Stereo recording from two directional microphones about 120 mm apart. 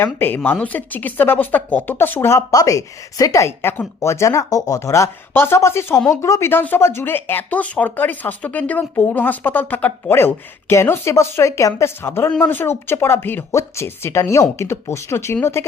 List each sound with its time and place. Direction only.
0.0 s speech: 15° left (ahead or behind)